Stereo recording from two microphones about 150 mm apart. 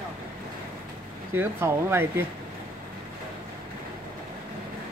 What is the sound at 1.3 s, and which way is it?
Speech, 15° right (ahead or behind).